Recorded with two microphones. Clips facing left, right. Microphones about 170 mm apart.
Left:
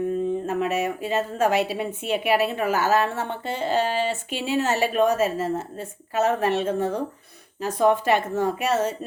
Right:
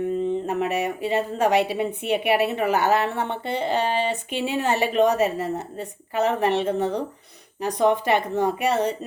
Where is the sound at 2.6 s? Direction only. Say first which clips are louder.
Right 2 dB; 65° right (ahead or behind).